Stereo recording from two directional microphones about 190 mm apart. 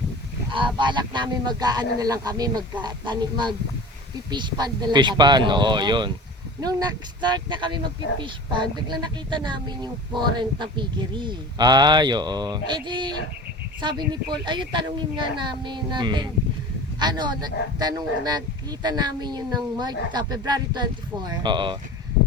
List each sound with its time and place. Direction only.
0.5 s speech: 25° right (ahead or behind)